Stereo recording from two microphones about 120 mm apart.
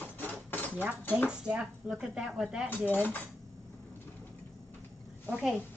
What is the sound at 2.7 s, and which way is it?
Cutlery, 15° left (ahead or behind).